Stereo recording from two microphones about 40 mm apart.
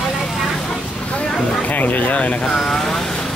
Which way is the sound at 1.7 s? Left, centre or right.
Left.